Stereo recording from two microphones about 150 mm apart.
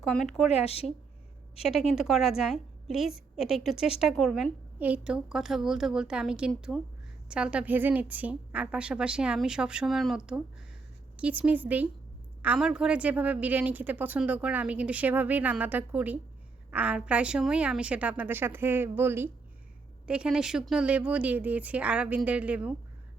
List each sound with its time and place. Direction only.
0.0 s a woman's voice: centre (ahead or behind)
0.5 s speech: 40° left (ahead or behind)
1.9 s a woman's voice: centre (ahead or behind)